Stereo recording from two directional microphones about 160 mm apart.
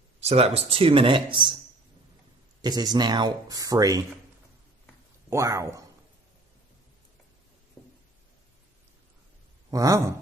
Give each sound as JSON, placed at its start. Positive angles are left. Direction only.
{"t": 0.2, "sound": "speech", "side_deg": -40}
{"t": 2.6, "sound": "speech", "side_deg": -25}
{"t": 5.3, "sound": "speech", "side_deg": -20}
{"t": 9.7, "sound": "speech", "side_deg": -20}